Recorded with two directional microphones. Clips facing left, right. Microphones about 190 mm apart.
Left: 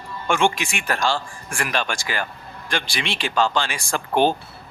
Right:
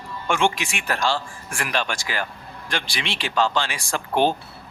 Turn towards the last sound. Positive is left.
turn(degrees=50)  # may be behind; listen again after turning